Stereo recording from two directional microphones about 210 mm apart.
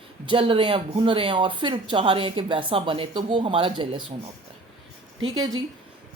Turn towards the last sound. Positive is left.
turn(degrees=-20)  # may be behind; listen again after turning